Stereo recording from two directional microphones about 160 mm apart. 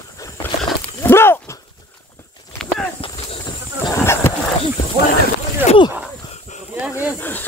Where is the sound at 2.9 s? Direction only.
35° left (ahead or behind).